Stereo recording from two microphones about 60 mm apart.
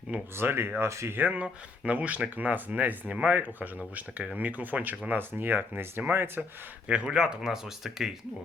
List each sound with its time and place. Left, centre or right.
0.3 s speech: right
1.1 s speech: right
6.8 s speech: centre